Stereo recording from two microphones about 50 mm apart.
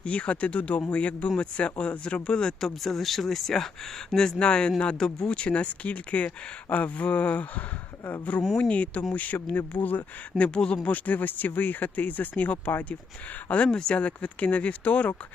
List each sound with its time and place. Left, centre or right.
0.0 s speech: left
10.3 s speech: centre
10.8 s speech: left
13.7 s speech: centre